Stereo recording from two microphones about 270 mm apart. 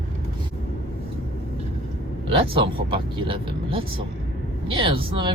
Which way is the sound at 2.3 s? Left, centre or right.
Centre.